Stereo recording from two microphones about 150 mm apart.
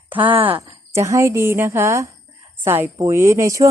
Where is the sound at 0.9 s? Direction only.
20° right (ahead or behind).